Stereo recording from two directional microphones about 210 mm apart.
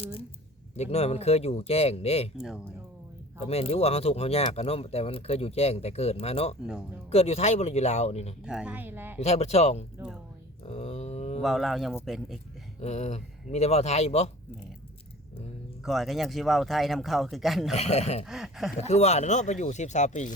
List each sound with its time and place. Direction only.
0.0 s speech: 25° left (ahead or behind)
2.4 s speech: 5° right (ahead or behind)
3.4 s speech: 30° left (ahead or behind)
8.4 s speech: 5° right (ahead or behind)
9.1 s speech: 30° left (ahead or behind)
10.7 s a sound: 30° left (ahead or behind)
11.3 s speech: centre (ahead or behind)
12.8 s speech: 30° left (ahead or behind)
15.8 s speech: centre (ahead or behind)
17.7 s speech: 30° left (ahead or behind)
18.3 s speech: centre (ahead or behind)
18.8 s speech: 30° left (ahead or behind)